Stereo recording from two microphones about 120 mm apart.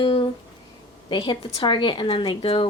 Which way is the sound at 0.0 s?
45° left (ahead or behind).